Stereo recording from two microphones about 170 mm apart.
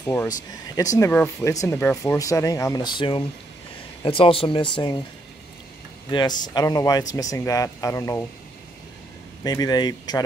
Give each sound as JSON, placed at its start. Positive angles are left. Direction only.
{"t": 0.0, "sound": "speech", "side_deg": 15}
{"t": 6.1, "sound": "speech", "side_deg": 25}
{"t": 9.4, "sound": "speech", "side_deg": 25}